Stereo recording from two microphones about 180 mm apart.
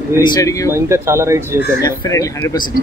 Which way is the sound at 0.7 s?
15° right (ahead or behind).